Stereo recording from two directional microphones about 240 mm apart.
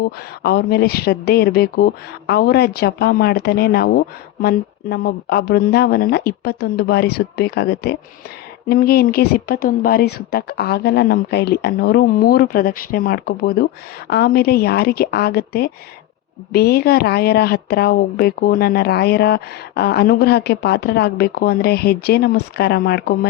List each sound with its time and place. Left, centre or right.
0.0 s speech: left